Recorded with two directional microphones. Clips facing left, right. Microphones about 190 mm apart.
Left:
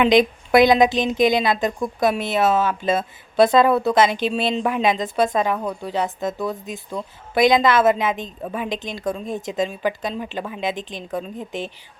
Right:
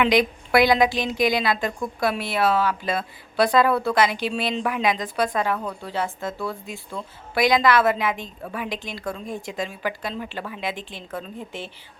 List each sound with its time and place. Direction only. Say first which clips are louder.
0.0 s a woman's voice: left 4 dB; 20° left (ahead or behind)